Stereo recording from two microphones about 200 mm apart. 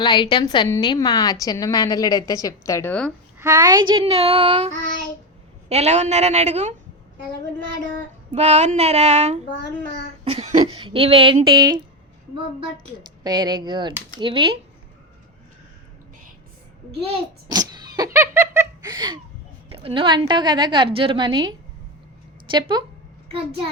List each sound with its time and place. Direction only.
0.0 s a woman's voice: 20° left (ahead or behind)
3.3 s a woman's voice: 15° right (ahead or behind); by 6.7 s 35° right (ahead or behind)
8.3 s a woman's voice: 35° right (ahead or behind)
13.2 s a woman's voice: 20° right (ahead or behind)
17.0 s giggle: 25° right (ahead or behind)
19.7 s a woman's voice: 25° right (ahead or behind)
22.5 s a woman's voice: 20° right (ahead or behind)